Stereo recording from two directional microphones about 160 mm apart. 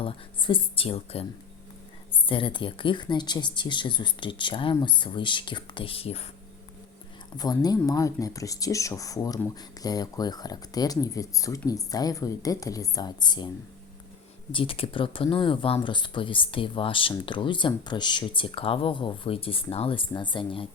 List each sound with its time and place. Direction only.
0.0 s speech: 35° left (ahead or behind)
7.3 s speech: 25° left (ahead or behind)
14.5 s speech: 35° left (ahead or behind)